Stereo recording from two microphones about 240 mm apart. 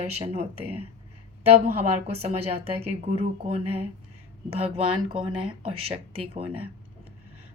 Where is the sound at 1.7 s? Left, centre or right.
Right.